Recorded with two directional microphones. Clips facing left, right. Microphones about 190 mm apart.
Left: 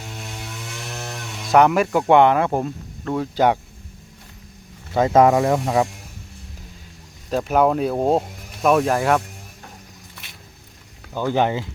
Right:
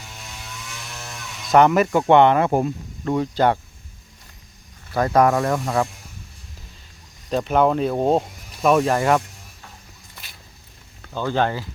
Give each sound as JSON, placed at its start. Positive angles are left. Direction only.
{"t": 0.9, "sound": "a sound", "side_deg": 55}
{"t": 1.5, "sound": "speech", "side_deg": 0}
{"t": 2.5, "sound": "speech", "side_deg": -10}
{"t": 3.3, "sound": "speech", "side_deg": 10}
{"t": 4.9, "sound": "speech", "side_deg": 20}
{"t": 7.3, "sound": "speech", "side_deg": 5}
{"t": 11.1, "sound": "speech", "side_deg": 15}